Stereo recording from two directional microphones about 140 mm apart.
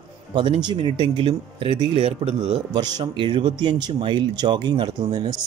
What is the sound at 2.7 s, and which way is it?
Speech, 30° right (ahead or behind).